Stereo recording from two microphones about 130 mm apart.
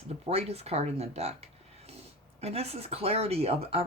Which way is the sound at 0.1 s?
50° right (ahead or behind).